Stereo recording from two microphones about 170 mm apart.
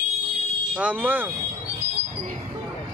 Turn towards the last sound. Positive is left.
turn(degrees=-10)  # may be behind; listen again after turning